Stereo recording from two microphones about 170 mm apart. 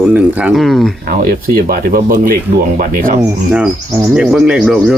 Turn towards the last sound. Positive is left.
turn(degrees=-5)  # may be behind; listen again after turning